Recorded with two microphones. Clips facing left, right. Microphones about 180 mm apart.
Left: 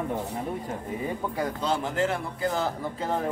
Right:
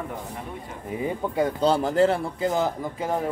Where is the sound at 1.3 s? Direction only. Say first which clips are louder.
Right 9 dB; 30° right (ahead or behind).